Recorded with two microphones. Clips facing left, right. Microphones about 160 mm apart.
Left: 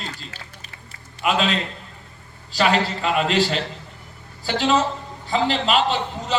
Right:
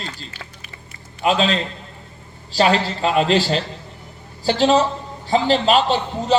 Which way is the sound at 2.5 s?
35° right (ahead or behind).